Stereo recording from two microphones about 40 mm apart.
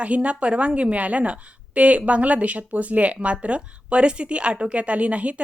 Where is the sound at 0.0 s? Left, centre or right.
Right.